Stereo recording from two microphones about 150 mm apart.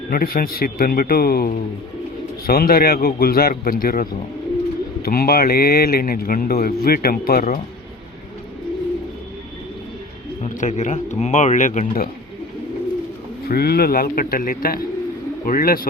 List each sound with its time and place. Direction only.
0.1 s speech: 80° left
5.0 s speech: 90° left
10.5 s speech: 55° left (ahead or behind)
13.4 s speech: 90° left